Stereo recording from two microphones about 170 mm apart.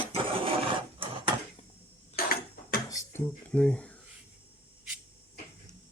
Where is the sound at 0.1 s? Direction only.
30° right (ahead or behind).